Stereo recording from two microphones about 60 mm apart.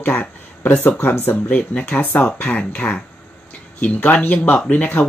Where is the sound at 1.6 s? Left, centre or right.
Left.